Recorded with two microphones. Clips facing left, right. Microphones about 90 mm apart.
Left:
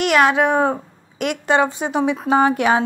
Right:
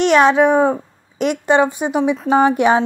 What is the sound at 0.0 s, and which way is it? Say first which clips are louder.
A woman's voice: right 4 dB; 25° right (ahead or behind).